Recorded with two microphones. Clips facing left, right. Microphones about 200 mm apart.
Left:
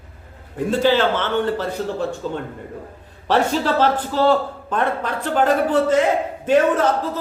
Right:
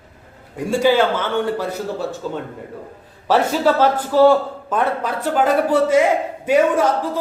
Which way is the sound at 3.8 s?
10° right (ahead or behind).